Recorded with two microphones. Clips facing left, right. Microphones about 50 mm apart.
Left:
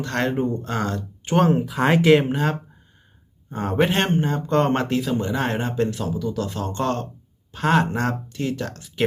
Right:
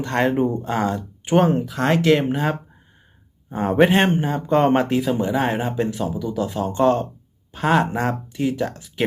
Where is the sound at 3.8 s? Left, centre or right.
Centre.